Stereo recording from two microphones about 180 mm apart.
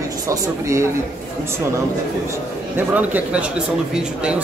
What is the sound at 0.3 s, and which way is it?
Speech, 15° right (ahead or behind).